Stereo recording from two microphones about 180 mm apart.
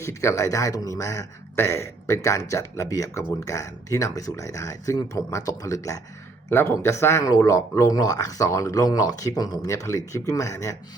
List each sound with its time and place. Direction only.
0.0 s speech: 15° left (ahead or behind)